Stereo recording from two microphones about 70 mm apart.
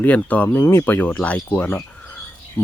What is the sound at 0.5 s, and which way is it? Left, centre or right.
Speech, left.